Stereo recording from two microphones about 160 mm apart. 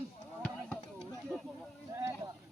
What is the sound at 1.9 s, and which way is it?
Vehicle, 20° right (ahead or behind).